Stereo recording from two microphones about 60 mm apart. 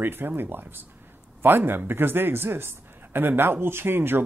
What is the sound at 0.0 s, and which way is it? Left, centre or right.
Speech, right.